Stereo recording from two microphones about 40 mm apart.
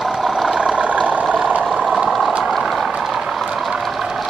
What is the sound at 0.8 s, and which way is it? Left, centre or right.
Vehicle, right.